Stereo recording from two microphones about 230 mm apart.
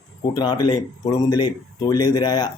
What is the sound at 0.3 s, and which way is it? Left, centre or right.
Speech, centre.